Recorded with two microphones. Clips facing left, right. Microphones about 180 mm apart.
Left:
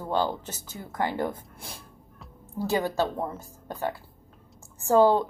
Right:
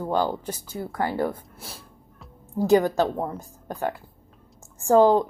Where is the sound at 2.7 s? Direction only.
15° right (ahead or behind).